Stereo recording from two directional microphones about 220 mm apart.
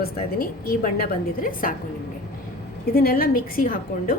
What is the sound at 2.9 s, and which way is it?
A woman's voice, 40° left (ahead or behind).